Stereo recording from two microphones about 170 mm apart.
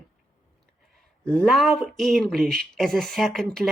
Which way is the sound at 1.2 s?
5° left (ahead or behind).